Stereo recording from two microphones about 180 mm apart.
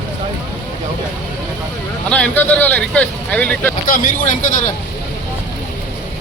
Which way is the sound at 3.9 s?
45° left (ahead or behind).